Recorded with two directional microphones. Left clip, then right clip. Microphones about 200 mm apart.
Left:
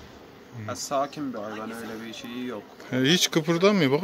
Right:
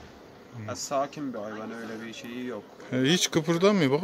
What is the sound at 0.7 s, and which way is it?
Speech, 10° right (ahead or behind).